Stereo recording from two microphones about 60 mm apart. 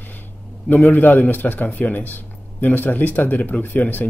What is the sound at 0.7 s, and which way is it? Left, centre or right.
Speech, left.